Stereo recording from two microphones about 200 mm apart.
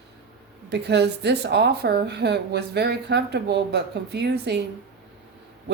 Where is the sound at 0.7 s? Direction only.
60° right (ahead or behind).